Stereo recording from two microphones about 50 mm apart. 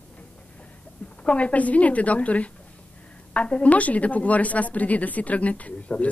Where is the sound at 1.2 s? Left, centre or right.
Left.